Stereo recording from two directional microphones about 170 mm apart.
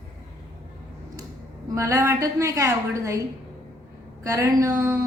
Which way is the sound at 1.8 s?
15° right (ahead or behind).